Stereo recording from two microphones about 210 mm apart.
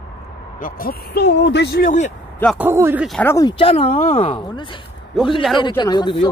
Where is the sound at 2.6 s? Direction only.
10° right (ahead or behind).